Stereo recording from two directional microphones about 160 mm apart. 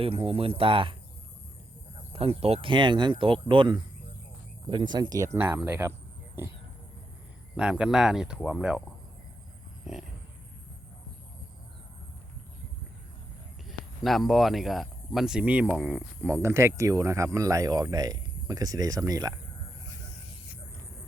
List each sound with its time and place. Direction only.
0.0 s speech: 35° right (ahead or behind)
2.0 s speech: 40° right (ahead or behind); by 5.9 s 15° right (ahead or behind)
7.5 s speech: 5° right (ahead or behind)
9.9 s a sound: 5° right (ahead or behind)
14.0 s speech: centre (ahead or behind)
16.3 s speech: 15° right (ahead or behind)